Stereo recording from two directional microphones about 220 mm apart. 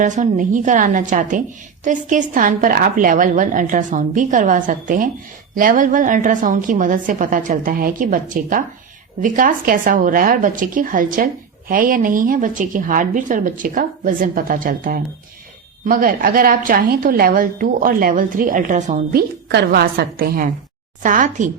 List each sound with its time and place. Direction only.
0.0 s a woman's voice: 35° right (ahead or behind)